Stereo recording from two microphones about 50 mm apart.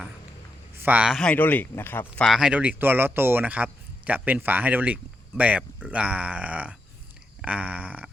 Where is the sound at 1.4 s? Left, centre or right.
Left.